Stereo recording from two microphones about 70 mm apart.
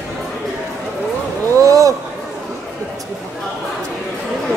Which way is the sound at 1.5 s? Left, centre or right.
Right.